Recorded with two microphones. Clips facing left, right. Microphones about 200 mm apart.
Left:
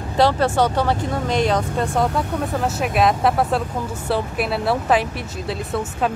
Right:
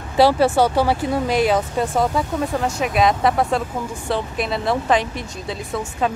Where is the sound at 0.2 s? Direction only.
10° right (ahead or behind).